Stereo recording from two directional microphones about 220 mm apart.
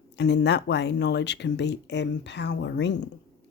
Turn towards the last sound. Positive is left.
turn(degrees=50)  # may be behind; listen again after turning